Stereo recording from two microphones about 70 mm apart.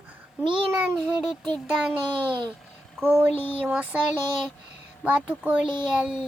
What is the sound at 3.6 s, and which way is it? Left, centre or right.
Child singing, centre.